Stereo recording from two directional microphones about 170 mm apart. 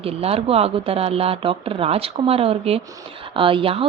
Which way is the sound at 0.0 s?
35° right (ahead or behind).